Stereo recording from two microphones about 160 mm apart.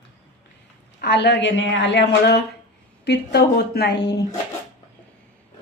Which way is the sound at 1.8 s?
90° left.